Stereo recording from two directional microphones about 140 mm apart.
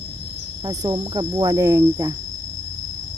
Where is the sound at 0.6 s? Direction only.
30° right (ahead or behind).